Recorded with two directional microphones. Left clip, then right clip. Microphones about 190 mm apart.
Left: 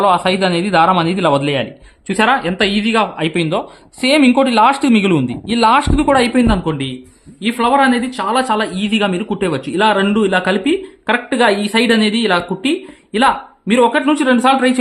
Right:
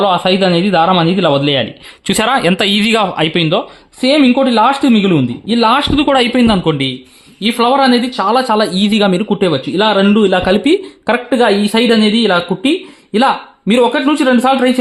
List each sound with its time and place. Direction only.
0.0 s speech: 30° right (ahead or behind)
2.0 s a man's voice: 40° right (ahead or behind)
3.3 s a man's voice: 20° right (ahead or behind)